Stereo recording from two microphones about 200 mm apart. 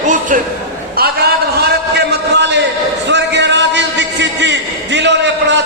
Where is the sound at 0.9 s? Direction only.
50° right (ahead or behind).